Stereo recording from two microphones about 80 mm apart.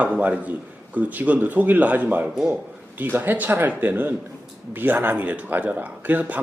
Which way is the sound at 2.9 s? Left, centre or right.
Right.